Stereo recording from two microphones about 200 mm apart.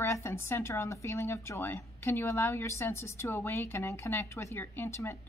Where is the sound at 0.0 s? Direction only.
15° left (ahead or behind).